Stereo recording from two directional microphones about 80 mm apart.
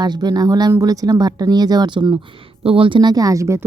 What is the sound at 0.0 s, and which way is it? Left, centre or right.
Speech, right.